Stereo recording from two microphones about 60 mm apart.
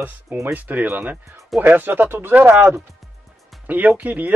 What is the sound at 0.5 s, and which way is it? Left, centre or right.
Speech, right.